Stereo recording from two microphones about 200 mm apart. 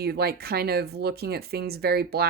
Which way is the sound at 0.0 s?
50° right (ahead or behind).